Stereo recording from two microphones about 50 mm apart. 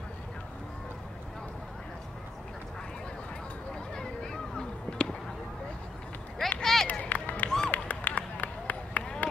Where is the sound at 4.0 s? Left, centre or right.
Centre.